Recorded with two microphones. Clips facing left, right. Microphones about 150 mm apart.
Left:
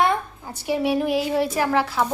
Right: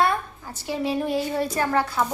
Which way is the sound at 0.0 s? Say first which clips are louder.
Left 2 dB; 20° left (ahead or behind).